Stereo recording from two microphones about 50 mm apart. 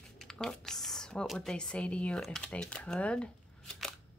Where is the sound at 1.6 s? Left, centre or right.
Centre.